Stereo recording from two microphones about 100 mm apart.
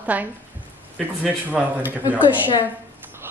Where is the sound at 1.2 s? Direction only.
15° right (ahead or behind).